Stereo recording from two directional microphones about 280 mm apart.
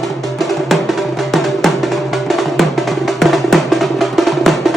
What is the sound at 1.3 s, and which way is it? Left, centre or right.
Music, centre.